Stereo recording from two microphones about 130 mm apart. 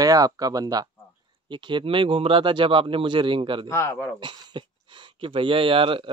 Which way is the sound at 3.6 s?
20° left (ahead or behind).